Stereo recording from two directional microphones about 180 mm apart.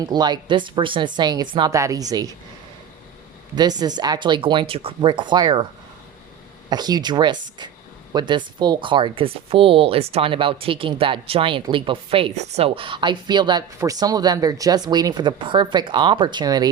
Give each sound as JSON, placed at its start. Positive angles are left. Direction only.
{"t": 0.0, "sound": "speech", "side_deg": -25}
{"t": 3.5, "sound": "speech", "side_deg": -25}
{"t": 6.7, "sound": "speech", "side_deg": -20}